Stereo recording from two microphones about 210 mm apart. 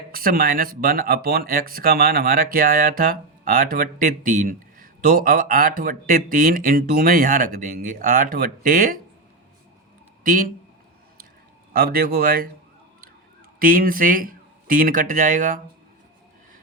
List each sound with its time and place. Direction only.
0.1 s speech: 45° right (ahead or behind)
10.2 s speech: 40° right (ahead or behind)
11.7 s speech: 45° right (ahead or behind)
13.6 s speech: 45° right (ahead or behind)